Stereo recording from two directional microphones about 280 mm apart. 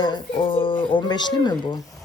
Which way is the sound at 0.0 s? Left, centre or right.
Centre.